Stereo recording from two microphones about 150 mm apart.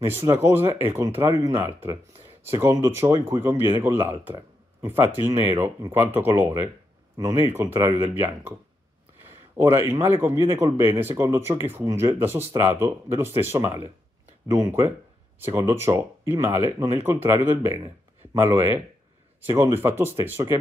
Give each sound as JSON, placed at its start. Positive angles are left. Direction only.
{"t": 0.0, "sound": "speech", "side_deg": -15}
{"t": 9.6, "sound": "speech", "side_deg": -20}